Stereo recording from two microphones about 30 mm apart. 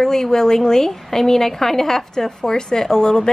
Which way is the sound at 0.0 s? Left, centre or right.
Centre.